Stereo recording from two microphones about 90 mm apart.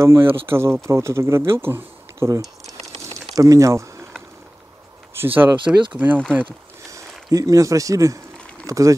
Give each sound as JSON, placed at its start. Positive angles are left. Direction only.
{"t": 0.0, "sound": "speech", "side_deg": -30}
{"t": 5.1, "sound": "speech", "side_deg": -25}
{"t": 6.9, "sound": "speech", "side_deg": -40}